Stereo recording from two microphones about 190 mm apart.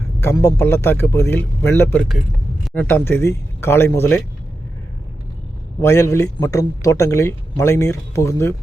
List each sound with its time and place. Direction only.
0.2 s speech: 15° left (ahead or behind)
2.0 s speech: centre (ahead or behind)
5.8 s speech: 15° left (ahead or behind)